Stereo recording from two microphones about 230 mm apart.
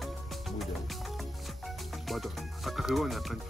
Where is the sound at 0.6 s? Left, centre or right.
Centre.